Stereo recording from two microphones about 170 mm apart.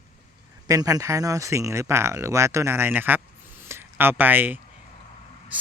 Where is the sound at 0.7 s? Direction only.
20° right (ahead or behind).